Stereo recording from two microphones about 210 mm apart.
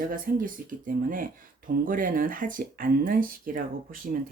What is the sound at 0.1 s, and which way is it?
Speech, 40° right (ahead or behind).